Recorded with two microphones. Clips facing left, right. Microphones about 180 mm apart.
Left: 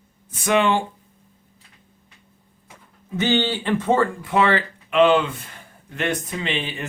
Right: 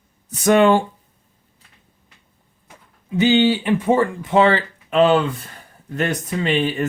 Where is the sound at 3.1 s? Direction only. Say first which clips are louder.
Right 6 dB; 15° right (ahead or behind); by 6.8 s 45° right (ahead or behind).